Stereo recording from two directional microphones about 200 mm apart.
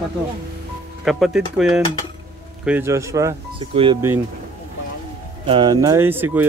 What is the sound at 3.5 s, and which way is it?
Speech, 25° right (ahead or behind).